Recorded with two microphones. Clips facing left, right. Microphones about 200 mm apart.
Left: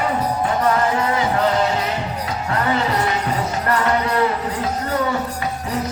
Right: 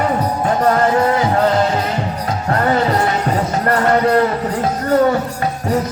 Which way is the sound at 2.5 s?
45° right (ahead or behind).